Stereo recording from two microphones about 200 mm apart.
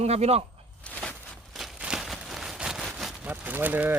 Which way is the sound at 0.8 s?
5° left (ahead or behind).